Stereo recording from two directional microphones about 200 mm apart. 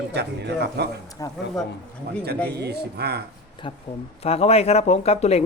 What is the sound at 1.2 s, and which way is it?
Speech, 20° left (ahead or behind).